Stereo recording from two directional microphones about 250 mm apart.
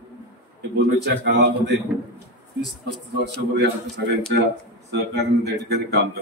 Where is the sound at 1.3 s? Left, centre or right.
Right.